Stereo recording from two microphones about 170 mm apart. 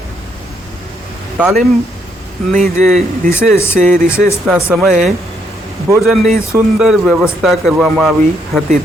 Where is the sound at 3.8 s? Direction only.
50° right (ahead or behind).